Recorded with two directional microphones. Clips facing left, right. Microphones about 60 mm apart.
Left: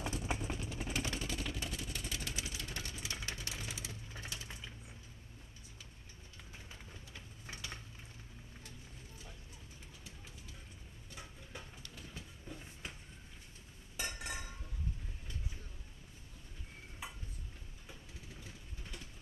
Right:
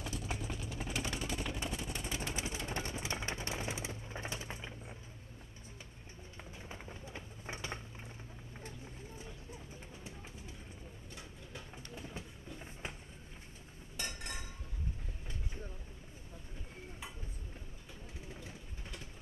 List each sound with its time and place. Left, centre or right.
0.0 s vehicle: left
0.9 s vehicle: centre
6.7 s a sound: right
11.9 s train: right
13.9 s chink: centre